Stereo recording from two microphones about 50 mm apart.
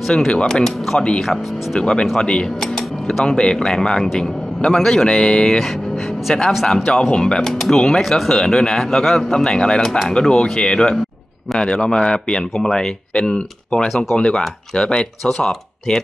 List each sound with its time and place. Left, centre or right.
0.0 s speech: centre
0.3 s a man's voice: centre
1.8 s speech: centre
2.7 s a sound: centre
3.3 s a man's voice: centre
7.5 s a man's voice: centre